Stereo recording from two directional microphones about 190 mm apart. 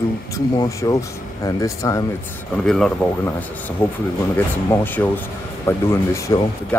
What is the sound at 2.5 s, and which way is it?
Speech, centre (ahead or behind).